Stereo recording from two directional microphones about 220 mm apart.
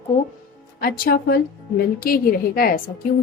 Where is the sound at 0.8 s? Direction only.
40° left (ahead or behind).